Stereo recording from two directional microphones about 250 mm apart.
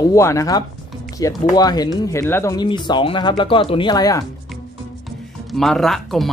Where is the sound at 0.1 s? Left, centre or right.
Centre.